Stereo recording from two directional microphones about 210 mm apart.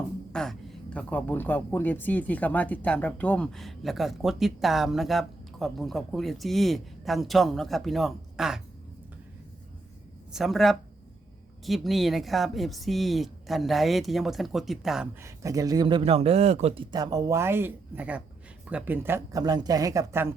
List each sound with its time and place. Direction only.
0.3 s a sound: 5° left (ahead or behind)
0.9 s speech: 10° left (ahead or behind)
10.3 s speech: centre (ahead or behind)
15.2 s speech: 15° right (ahead or behind)